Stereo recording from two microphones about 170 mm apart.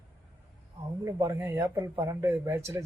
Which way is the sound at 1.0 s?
20° right (ahead or behind).